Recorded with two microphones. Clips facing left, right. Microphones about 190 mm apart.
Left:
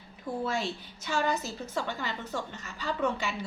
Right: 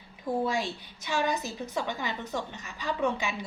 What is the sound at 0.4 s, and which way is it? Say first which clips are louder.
A woman's voice: right 2 dB; 15° right (ahead or behind).